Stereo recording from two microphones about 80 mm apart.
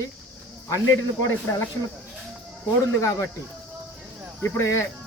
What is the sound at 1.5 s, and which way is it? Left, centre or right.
Speech, left.